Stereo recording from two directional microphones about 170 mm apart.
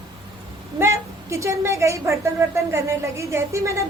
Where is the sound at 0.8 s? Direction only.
15° right (ahead or behind).